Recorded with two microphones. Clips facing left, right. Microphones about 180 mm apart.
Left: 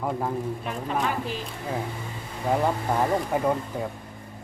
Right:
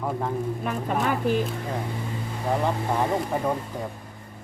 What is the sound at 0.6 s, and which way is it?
Speech, 50° right (ahead or behind).